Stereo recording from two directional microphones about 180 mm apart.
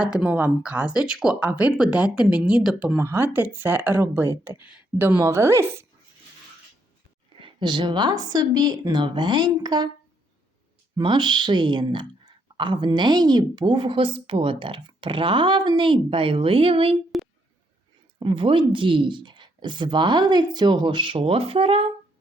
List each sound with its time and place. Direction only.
0.0 s speech: 5° right (ahead or behind)
7.3 s speech: 25° right (ahead or behind)
10.9 s speech: 25° right (ahead or behind)
18.2 s speech: 30° right (ahead or behind)